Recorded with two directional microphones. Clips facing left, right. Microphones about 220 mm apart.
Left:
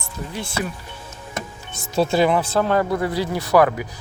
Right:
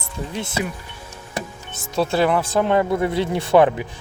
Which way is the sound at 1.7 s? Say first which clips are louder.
Left 2 dB; centre (ahead or behind).